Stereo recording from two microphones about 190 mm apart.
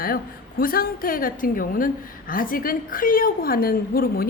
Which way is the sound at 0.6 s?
50° left (ahead or behind).